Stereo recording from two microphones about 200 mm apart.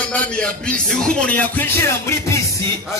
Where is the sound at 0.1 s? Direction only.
5° left (ahead or behind).